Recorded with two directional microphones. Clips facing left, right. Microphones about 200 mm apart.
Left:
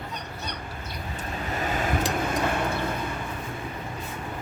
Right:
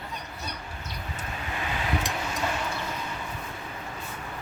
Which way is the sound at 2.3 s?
55° left (ahead or behind).